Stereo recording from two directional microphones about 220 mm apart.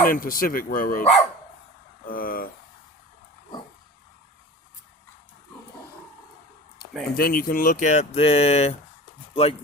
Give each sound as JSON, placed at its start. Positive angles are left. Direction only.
{"t": 0.0, "sound": "speech", "side_deg": 40}
{"t": 2.0, "sound": "speech", "side_deg": 40}
{"t": 7.1, "sound": "speech", "side_deg": 45}